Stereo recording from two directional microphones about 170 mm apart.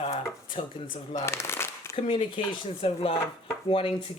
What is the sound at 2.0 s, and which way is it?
Speech, 35° left (ahead or behind).